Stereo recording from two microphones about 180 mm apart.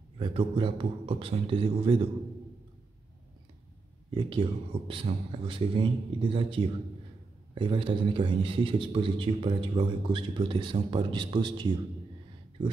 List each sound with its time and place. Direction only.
0.2 s a man's voice: 30° right (ahead or behind)
4.1 s a man's voice: 30° right (ahead or behind)